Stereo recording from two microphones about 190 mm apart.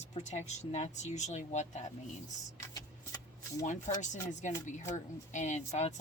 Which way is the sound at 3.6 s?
40° left (ahead or behind).